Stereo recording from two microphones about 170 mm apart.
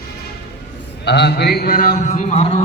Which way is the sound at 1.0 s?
80° left.